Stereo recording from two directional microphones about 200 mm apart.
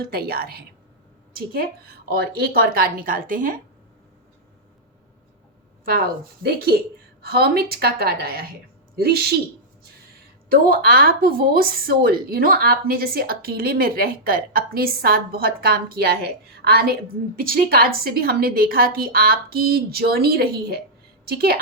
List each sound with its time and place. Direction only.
0.0 s speech: 50° right (ahead or behind)
6.4 s speech: 50° right (ahead or behind)
10.5 s speech: 45° right (ahead or behind)